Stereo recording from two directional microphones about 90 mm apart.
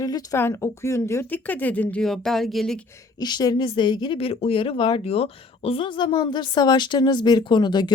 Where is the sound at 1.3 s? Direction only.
20° left (ahead or behind).